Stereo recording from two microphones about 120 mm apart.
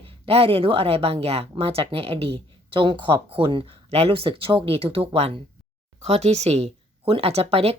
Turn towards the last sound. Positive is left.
turn(degrees=-55)  # may be behind; listen again after turning